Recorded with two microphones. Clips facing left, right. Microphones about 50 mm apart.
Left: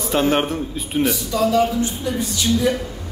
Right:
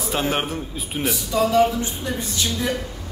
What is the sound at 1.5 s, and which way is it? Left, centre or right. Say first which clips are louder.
Speech: even; right.